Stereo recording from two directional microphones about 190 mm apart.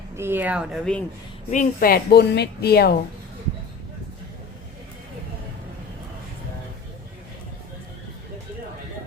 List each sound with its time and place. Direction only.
0.2 s speech: 10° right (ahead or behind)
1.5 s a woman's voice: 45° left (ahead or behind)